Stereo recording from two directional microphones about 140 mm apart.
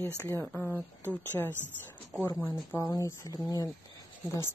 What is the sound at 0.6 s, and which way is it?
Speech, 15° left (ahead or behind).